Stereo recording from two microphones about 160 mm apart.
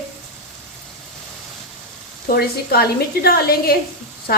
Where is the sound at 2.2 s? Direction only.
70° left (ahead or behind).